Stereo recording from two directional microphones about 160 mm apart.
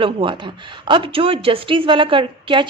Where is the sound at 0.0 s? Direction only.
30° right (ahead or behind).